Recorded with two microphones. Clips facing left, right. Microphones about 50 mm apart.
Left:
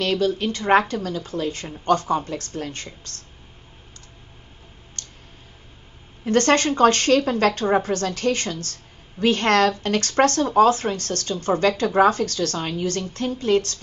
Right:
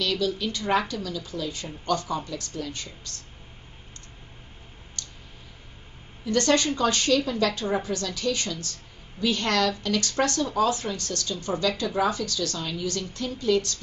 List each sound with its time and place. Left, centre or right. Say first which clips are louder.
0.0 s a woman's voice: left 5 dB; left
5.0 s clicking: even; left
6.2 s speech: left 4 dB; left